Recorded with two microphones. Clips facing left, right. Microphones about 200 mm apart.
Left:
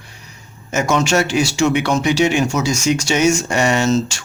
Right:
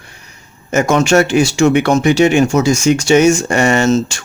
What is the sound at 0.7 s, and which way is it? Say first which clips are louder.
Speech: right 5 dB; 55° right (ahead or behind).